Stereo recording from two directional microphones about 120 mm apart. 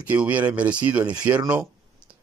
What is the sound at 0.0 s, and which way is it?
Speech, 15° right (ahead or behind).